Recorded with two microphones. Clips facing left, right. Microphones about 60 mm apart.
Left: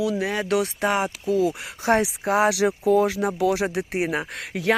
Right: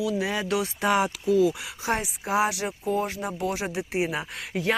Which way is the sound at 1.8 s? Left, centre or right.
Left.